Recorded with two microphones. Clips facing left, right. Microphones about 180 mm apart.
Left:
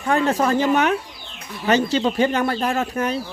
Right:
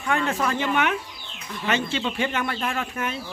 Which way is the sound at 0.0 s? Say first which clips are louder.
Left 5 dB; 40° left (ahead or behind).